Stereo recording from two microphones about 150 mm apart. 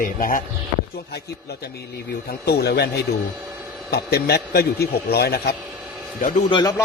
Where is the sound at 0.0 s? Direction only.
65° left (ahead or behind).